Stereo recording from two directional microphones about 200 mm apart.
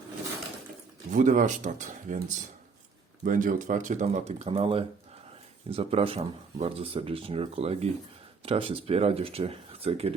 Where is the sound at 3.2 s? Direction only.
40° right (ahead or behind).